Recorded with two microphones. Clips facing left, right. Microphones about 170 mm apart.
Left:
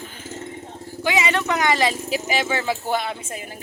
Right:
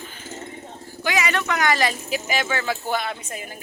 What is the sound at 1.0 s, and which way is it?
Speech, 25° left (ahead or behind).